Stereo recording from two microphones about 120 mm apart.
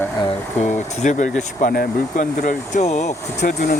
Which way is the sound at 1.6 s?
90° left.